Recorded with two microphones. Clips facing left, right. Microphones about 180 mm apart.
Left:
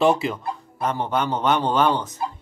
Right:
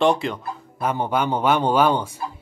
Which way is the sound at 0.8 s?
10° right (ahead or behind).